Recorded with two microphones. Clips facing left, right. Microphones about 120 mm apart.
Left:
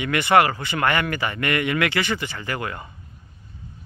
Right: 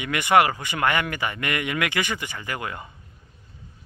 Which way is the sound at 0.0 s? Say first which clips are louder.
Left 1 dB; 15° right (ahead or behind).